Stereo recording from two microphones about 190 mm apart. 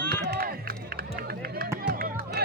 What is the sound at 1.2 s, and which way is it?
Run, 50° right (ahead or behind).